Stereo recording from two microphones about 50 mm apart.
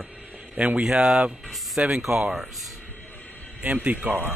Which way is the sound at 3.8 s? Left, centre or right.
Right.